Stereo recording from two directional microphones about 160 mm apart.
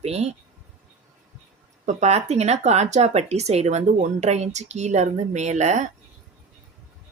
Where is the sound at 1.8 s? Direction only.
45° right (ahead or behind).